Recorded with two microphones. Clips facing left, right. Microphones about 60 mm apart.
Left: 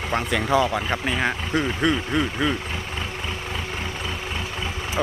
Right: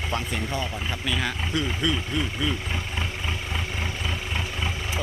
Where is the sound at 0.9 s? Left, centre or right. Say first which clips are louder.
Left 5 dB; left.